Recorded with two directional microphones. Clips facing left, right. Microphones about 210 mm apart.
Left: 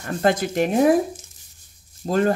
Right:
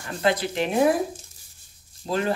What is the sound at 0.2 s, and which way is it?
Speech, 45° left (ahead or behind).